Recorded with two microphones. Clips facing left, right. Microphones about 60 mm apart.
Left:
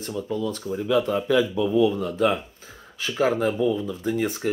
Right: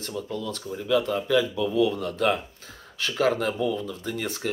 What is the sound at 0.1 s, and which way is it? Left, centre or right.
Speech, left.